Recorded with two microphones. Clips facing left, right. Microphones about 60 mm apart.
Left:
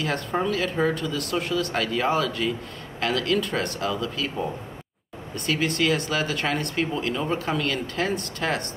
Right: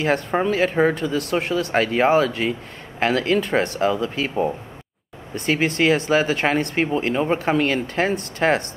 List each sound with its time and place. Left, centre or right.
0.0 s speech: right
5.8 s speech: right